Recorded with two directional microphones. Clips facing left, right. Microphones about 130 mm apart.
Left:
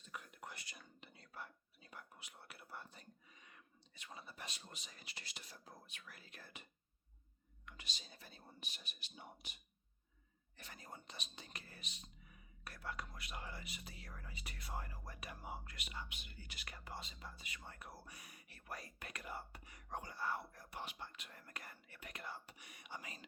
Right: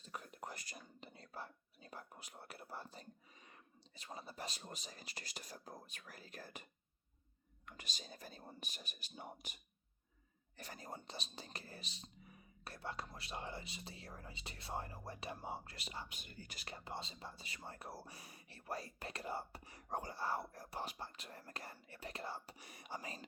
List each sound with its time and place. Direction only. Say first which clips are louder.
0.0 s whispering: right 3 dB; 35° right (ahead or behind)
7.6 s speech: right 3 dB; 45° right (ahead or behind)
10.6 s speech: right 5 dB; 40° right (ahead or behind)
16.6 s speech: right 4 dB; 25° right (ahead or behind)